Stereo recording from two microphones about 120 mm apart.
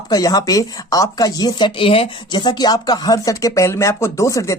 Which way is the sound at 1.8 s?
50° left (ahead or behind).